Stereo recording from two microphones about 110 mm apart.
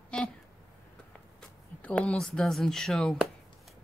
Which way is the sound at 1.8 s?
10° left (ahead or behind).